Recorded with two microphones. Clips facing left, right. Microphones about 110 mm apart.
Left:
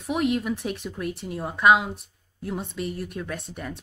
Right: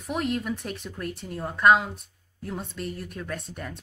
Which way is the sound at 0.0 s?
5° left (ahead or behind).